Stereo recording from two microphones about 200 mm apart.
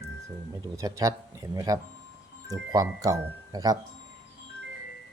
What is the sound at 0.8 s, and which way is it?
Speech, 15° right (ahead or behind).